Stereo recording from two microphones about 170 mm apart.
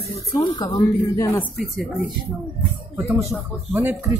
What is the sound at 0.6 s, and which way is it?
Speech, 25° left (ahead or behind).